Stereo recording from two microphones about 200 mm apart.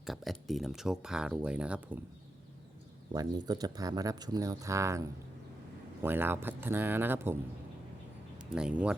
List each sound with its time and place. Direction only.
0.0 s speech: centre (ahead or behind)
3.1 s speech: 20° right (ahead or behind)
8.4 s speech: 5° right (ahead or behind)